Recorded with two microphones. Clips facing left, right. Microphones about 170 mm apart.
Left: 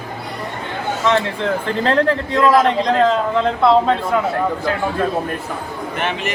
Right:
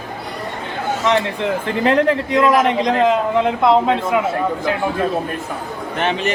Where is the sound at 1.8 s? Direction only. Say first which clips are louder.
Right 2 dB; 15° right (ahead or behind).